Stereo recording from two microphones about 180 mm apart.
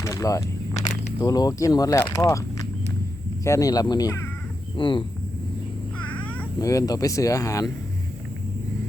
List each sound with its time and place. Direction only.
0.0 s speech: 20° left (ahead or behind)
3.4 s speech: 15° left (ahead or behind)
6.1 s cat: 10° left (ahead or behind)
6.6 s speech: 20° left (ahead or behind)